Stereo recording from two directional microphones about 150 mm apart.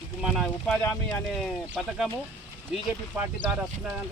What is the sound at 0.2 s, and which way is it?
Speech, 5° right (ahead or behind).